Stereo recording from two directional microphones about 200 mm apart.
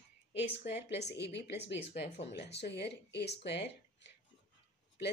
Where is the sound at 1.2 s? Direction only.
60° left (ahead or behind).